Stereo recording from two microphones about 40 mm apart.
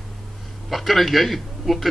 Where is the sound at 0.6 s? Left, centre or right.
Centre.